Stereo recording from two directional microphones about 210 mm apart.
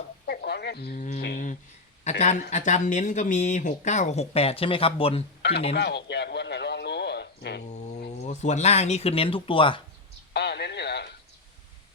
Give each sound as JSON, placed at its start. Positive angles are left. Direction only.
{"t": 0.3, "sound": "a sound", "side_deg": 50}
{"t": 1.2, "sound": "a sound", "side_deg": 40}
{"t": 2.0, "sound": "speech", "side_deg": 35}
{"t": 5.7, "sound": "radio", "side_deg": 50}
{"t": 8.2, "sound": "speech", "side_deg": 35}
{"t": 10.3, "sound": "radio", "side_deg": 50}